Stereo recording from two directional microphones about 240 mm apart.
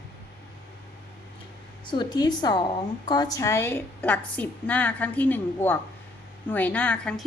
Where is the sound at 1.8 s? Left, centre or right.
Centre.